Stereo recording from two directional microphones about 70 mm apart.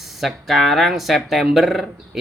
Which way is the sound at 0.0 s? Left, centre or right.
Centre.